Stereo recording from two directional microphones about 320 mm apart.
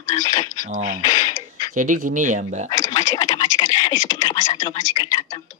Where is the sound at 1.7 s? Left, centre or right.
Right.